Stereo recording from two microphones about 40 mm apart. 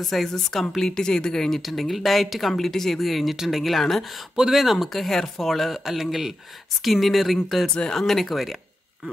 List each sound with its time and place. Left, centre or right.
0.0 s speech: centre
1.6 s speech: centre
7.6 s speech: centre
7.9 s speech: centre